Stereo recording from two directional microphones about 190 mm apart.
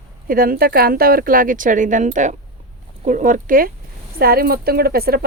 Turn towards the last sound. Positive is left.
turn(degrees=-55)  # may be behind; listen again after turning